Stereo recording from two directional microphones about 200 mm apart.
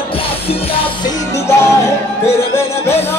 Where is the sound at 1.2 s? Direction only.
15° left (ahead or behind).